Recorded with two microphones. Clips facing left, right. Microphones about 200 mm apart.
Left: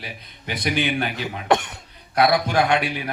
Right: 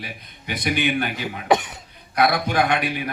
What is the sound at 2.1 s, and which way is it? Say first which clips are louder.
Speech: left 1 dB; 50° right (ahead or behind).